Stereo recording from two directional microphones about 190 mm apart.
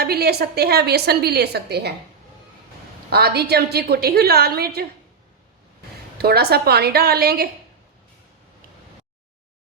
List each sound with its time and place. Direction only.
0.0 s speech: 55° right (ahead or behind)
3.1 s speech: 55° right (ahead or behind)
6.1 s speech: 55° right (ahead or behind)